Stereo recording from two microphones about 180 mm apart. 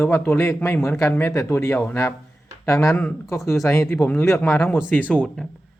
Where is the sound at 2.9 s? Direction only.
5° left (ahead or behind).